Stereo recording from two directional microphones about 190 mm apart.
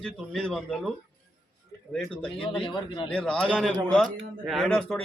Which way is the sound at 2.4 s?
25° left (ahead or behind).